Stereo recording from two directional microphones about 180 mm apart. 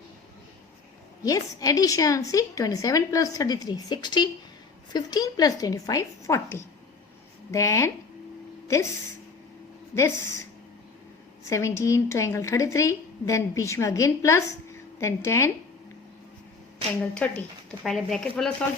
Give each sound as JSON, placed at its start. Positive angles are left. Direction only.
{"t": 1.2, "sound": "a woman's voice", "side_deg": 20}
{"t": 9.9, "sound": "a woman's voice", "side_deg": 15}
{"t": 11.4, "sound": "a woman's voice", "side_deg": 15}
{"t": 17.0, "sound": "a woman's voice", "side_deg": 10}